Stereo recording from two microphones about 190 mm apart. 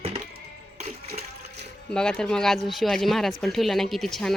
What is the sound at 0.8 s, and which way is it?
Water, 35° right (ahead or behind).